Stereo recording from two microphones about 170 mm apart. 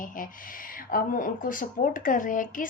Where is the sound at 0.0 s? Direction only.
55° left (ahead or behind).